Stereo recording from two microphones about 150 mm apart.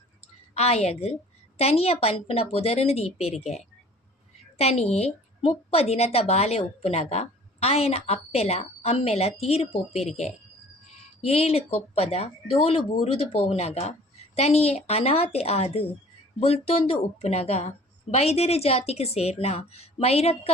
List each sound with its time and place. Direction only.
0.5 s a woman's voice: 45° left (ahead or behind)
11.2 s a woman's voice: 45° left (ahead or behind)